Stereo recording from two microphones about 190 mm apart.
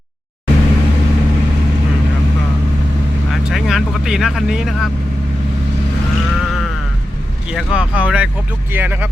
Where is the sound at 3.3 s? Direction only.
Centre (ahead or behind).